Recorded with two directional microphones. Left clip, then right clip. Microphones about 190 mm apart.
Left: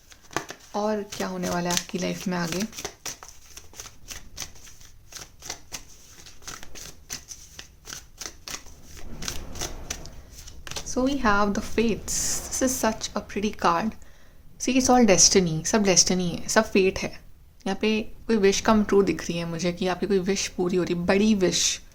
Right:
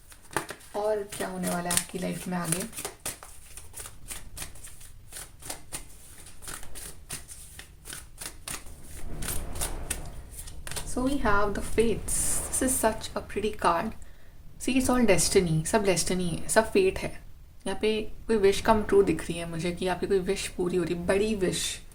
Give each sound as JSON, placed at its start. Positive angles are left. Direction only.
{"t": 0.3, "sound": "a sound", "side_deg": 30}
{"t": 0.7, "sound": "speech", "side_deg": 45}
{"t": 4.4, "sound": "shuffling cards", "side_deg": 25}
{"t": 10.9, "sound": "speech", "side_deg": 45}